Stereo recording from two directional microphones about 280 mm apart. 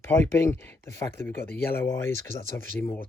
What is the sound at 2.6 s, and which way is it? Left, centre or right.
Speech, right.